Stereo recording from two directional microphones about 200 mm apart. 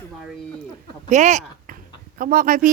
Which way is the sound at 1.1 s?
35° right (ahead or behind).